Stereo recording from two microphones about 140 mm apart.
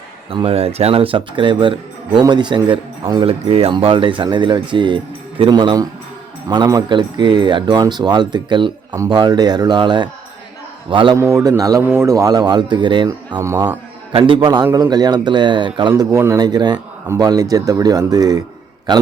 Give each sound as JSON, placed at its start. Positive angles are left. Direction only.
{"t": 0.3, "sound": "speech", "side_deg": -40}
{"t": 11.2, "sound": "speech", "side_deg": -25}
{"t": 13.4, "sound": "speech", "side_deg": -20}
{"t": 14.1, "sound": "speech", "side_deg": -35}
{"t": 15.9, "sound": "speech", "side_deg": -20}